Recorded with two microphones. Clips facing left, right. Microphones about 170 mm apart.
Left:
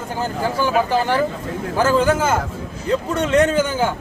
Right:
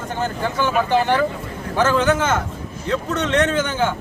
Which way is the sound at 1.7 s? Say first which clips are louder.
Left 1 dB; 10° left (ahead or behind).